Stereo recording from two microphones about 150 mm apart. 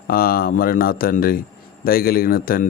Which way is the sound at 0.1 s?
80° left.